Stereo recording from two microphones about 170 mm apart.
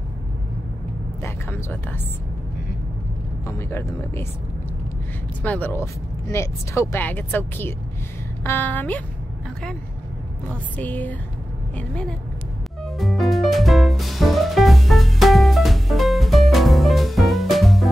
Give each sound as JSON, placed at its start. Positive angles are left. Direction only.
{"t": 1.2, "sound": "speech", "side_deg": 10}
{"t": 3.4, "sound": "speech", "side_deg": 15}
{"t": 5.4, "sound": "speech", "side_deg": 10}
{"t": 10.8, "sound": "a woman's voice", "side_deg": 10}
{"t": 12.8, "sound": "music", "side_deg": 0}